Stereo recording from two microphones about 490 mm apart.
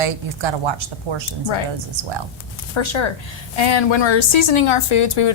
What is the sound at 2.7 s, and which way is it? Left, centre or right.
A woman's voice, left.